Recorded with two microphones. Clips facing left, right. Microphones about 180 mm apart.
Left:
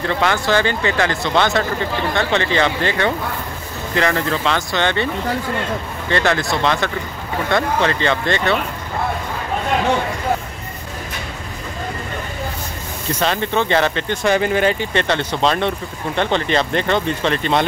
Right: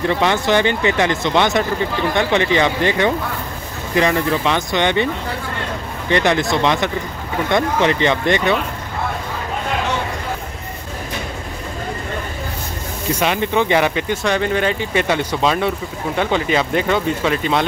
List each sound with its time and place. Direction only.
0.0 s speech: 20° right (ahead or behind)
6.0 s speech: 20° right (ahead or behind)
13.1 s speech: 10° right (ahead or behind)
14.2 s speech: 5° left (ahead or behind)